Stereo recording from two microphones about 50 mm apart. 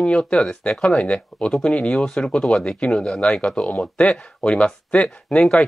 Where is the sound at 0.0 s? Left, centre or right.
Centre.